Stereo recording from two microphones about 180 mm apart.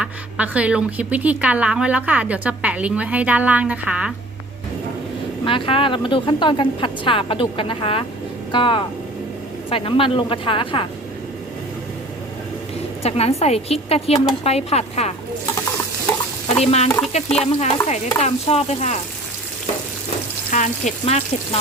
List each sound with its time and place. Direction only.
0.0 s a woman's voice: 5° right (ahead or behind)
5.5 s speech: 30° left (ahead or behind)
13.0 s speech: 35° left (ahead or behind)
16.5 s chicken: 35° left (ahead or behind)
17.3 s speech: 35° left (ahead or behind)
20.5 s speech: 45° left (ahead or behind)